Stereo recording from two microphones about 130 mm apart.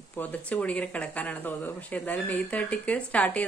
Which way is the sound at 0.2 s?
10° left (ahead or behind).